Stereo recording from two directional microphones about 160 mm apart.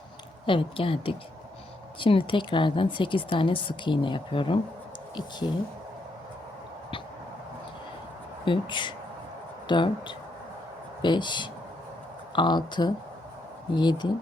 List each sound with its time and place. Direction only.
0.4 s speech: 35° left (ahead or behind)
8.4 s speech: 30° left (ahead or behind)